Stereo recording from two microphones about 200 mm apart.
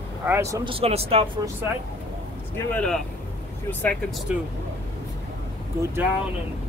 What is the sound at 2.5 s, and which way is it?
Speech, 5° left (ahead or behind).